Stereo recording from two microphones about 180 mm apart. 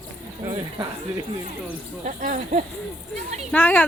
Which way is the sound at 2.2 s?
45° right (ahead or behind).